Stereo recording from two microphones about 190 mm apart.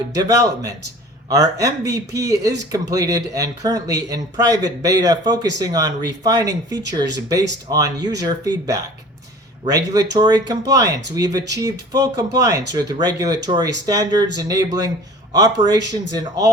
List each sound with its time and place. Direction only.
0.1 s a man's voice: 20° right (ahead or behind)